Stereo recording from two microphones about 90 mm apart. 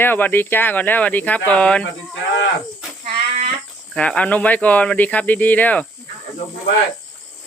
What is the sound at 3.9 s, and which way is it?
Speech, 15° left (ahead or behind).